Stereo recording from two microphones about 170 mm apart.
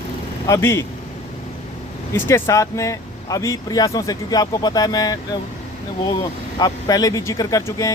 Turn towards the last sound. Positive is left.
turn(degrees=20)  # may be behind; listen again after turning